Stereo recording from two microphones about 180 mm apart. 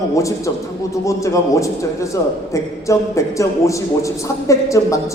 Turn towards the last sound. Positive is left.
turn(degrees=15)  # may be behind; listen again after turning